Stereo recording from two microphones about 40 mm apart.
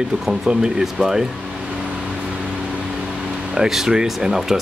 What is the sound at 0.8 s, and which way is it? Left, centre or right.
Speech, centre.